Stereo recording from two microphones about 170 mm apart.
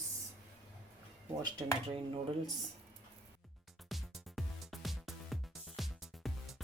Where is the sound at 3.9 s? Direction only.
Centre (ahead or behind).